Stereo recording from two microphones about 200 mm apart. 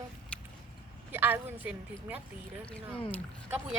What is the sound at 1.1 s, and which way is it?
Speech, 10° right (ahead or behind).